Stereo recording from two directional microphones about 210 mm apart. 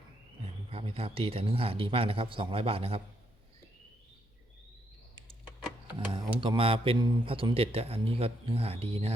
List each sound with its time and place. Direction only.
0.7 s speech: 25° right (ahead or behind)
6.1 s speech: 20° right (ahead or behind)